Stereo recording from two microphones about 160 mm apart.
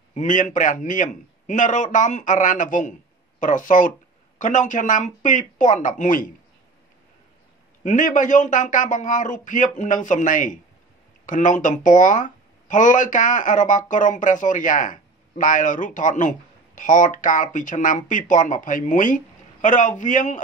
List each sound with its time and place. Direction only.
0.1 s speech: 50° left (ahead or behind)
7.8 s speech: 50° left (ahead or behind)